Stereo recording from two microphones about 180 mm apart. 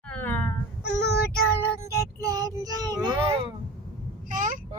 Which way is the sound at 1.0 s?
70° left (ahead or behind).